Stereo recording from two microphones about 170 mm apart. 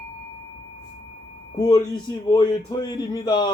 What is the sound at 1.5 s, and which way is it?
Speech, 25° left (ahead or behind).